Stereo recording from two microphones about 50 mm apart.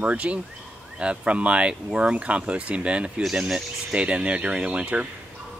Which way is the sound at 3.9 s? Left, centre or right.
Right.